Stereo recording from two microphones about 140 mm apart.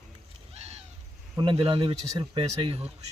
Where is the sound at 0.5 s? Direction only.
50° right (ahead or behind).